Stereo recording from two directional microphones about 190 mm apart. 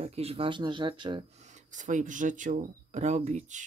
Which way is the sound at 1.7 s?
40° right (ahead or behind).